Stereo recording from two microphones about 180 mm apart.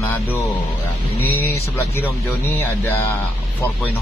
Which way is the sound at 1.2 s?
10° left (ahead or behind).